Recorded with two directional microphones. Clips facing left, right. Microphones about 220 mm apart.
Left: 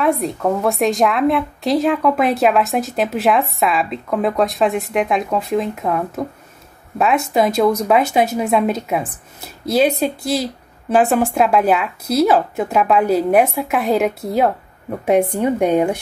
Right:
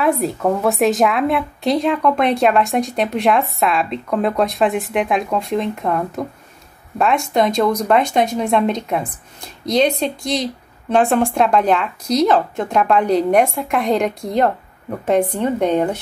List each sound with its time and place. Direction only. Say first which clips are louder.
0.0 s speech: even; centre (ahead or behind)